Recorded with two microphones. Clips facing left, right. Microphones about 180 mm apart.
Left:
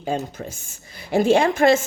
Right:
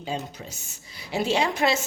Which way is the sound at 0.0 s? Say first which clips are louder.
Left 6 dB; 50° left (ahead or behind).